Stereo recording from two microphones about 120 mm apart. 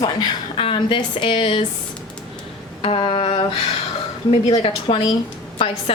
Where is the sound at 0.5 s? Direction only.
45° left (ahead or behind).